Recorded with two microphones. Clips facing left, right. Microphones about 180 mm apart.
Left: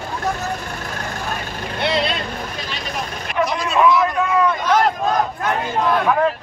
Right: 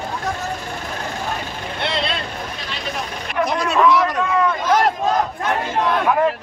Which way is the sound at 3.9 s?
85° right.